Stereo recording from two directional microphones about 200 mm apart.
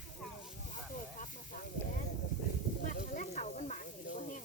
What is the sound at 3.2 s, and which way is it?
Snake, 40° left (ahead or behind).